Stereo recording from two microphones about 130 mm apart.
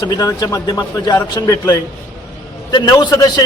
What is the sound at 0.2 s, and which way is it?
A man's voice, 25° left (ahead or behind).